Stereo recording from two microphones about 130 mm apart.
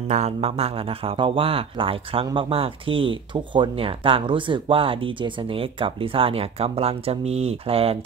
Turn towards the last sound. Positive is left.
turn(degrees=-50)  # may be behind; listen again after turning